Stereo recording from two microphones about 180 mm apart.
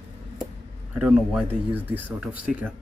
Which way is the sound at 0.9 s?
5° right (ahead or behind).